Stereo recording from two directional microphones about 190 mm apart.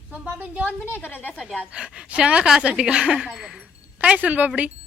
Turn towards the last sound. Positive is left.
turn(degrees=-5)  # may be behind; listen again after turning